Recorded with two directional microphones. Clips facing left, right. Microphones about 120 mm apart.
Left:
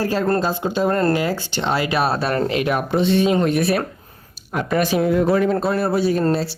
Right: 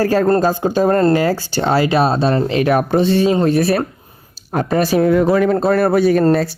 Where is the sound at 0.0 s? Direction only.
45° right (ahead or behind); by 2.4 s 25° right (ahead or behind).